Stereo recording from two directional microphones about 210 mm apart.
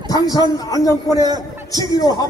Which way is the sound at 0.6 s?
15° left (ahead or behind).